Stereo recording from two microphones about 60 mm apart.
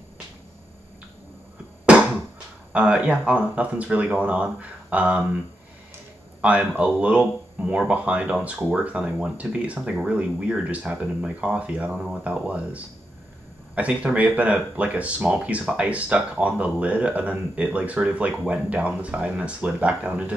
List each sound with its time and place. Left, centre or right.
2.7 s speech: centre
6.8 s speech: right